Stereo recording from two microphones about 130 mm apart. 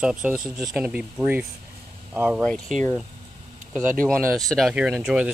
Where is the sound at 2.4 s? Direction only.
5° left (ahead or behind).